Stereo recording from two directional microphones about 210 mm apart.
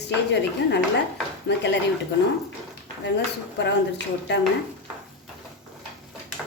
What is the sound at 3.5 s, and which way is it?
Speech, 55° left (ahead or behind).